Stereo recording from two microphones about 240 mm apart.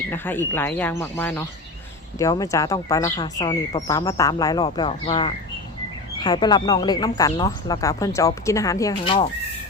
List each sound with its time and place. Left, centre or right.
0.1 s speech: centre